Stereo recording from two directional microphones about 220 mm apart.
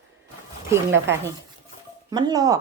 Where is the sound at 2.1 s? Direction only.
15° right (ahead or behind).